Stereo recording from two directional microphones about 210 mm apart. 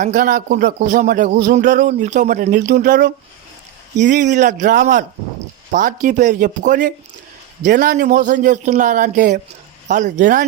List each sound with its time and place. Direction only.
0.0 s speech: 40° right (ahead or behind)
4.1 s speech: 35° right (ahead or behind)